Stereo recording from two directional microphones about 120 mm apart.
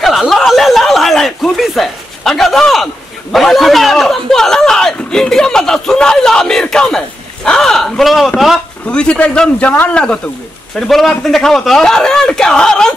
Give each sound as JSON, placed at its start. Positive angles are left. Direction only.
{"t": 0.0, "sound": "chuckle", "side_deg": 0}
{"t": 7.4, "sound": "a man's voice", "side_deg": 5}